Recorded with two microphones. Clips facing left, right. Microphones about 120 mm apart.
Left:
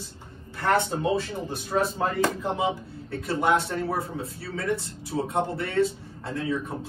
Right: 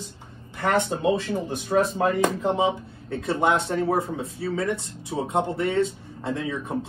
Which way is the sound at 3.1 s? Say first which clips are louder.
Right 1 dB; 25° right (ahead or behind).